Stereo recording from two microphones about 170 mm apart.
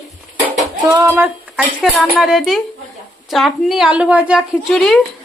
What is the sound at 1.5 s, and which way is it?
Speech, centre (ahead or behind).